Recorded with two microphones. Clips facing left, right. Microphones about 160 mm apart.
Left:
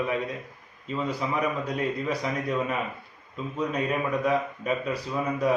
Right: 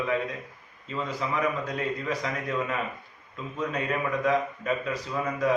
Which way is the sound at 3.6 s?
10° left (ahead or behind).